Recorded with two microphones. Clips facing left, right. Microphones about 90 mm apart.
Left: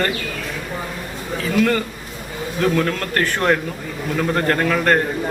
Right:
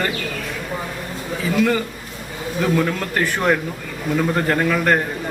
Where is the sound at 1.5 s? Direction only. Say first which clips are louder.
Left 1 dB; 10° right (ahead or behind).